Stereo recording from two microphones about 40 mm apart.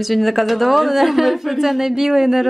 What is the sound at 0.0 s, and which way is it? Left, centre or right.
A woman's voice, centre.